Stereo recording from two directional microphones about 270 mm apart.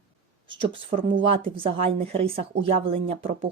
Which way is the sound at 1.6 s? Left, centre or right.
Right.